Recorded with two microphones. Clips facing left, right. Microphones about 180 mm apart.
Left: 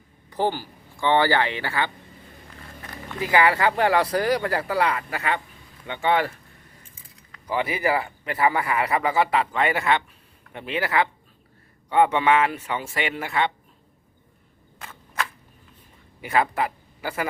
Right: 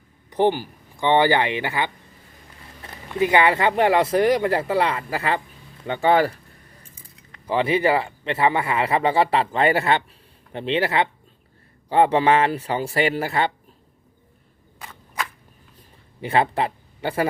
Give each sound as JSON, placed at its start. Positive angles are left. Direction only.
{"t": 0.3, "sound": "speech", "side_deg": -20}
{"t": 3.2, "sound": "speech", "side_deg": -25}
{"t": 7.4, "sound": "speech", "side_deg": -30}
{"t": 16.2, "sound": "speech", "side_deg": -30}